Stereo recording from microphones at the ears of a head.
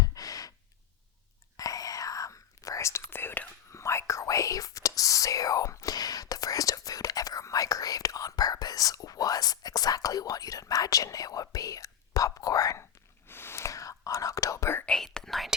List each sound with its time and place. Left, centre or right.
0.0 s sigh: left
1.5 s whispering: left